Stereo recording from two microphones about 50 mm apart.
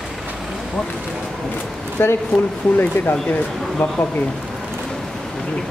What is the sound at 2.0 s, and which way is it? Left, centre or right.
Speech, left.